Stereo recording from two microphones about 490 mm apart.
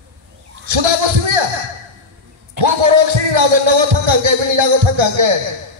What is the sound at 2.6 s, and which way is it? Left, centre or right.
Speech, right.